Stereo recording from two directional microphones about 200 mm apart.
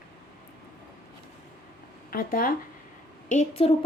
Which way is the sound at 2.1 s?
45° left (ahead or behind).